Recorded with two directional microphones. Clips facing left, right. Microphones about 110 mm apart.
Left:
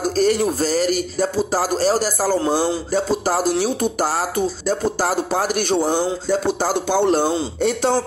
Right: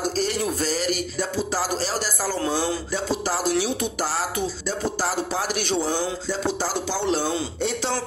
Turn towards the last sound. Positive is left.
turn(degrees=50)  # may be behind; listen again after turning